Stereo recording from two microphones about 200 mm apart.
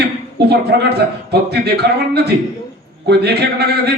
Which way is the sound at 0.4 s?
55° right (ahead or behind).